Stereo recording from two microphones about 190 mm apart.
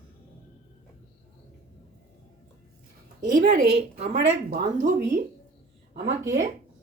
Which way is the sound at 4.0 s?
35° right (ahead or behind).